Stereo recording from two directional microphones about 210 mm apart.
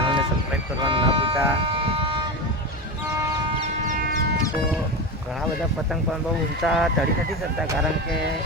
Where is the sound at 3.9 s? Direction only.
45° right (ahead or behind).